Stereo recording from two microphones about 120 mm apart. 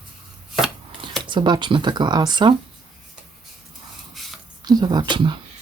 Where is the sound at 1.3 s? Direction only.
40° right (ahead or behind).